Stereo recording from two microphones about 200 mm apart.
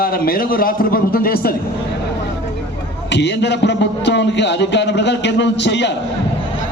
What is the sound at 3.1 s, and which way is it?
A man's voice, 60° left (ahead or behind).